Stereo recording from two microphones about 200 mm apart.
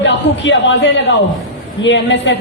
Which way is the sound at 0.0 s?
65° left (ahead or behind).